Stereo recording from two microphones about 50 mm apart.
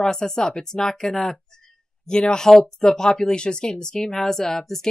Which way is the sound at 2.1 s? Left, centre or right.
Centre.